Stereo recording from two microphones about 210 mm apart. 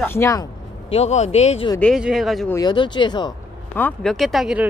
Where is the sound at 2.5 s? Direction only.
20° left (ahead or behind).